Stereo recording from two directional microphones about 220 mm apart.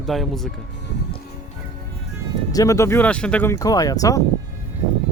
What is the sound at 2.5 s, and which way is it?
Speech, 15° left (ahead or behind).